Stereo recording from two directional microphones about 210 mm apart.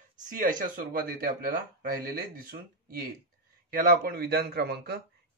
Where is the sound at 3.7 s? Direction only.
45° right (ahead or behind).